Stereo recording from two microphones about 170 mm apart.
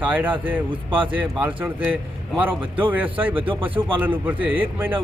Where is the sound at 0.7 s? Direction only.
30° right (ahead or behind).